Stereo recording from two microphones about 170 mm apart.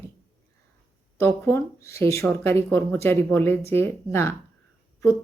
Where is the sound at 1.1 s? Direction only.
15° left (ahead or behind).